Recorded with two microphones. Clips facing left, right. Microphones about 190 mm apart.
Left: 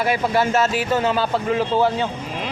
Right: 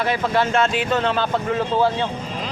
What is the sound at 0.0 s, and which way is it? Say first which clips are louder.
A man's voice: left 1 dB; 10° left (ahead or behind).